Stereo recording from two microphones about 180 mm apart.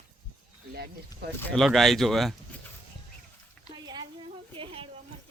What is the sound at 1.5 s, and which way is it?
Speech, centre (ahead or behind).